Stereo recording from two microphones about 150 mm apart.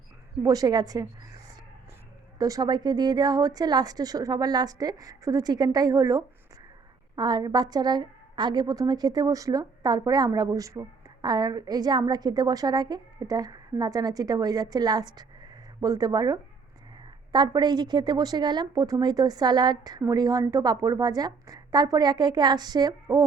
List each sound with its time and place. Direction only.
0.4 s a woman's voice: 25° right (ahead or behind)
2.4 s a woman's voice: 25° right (ahead or behind)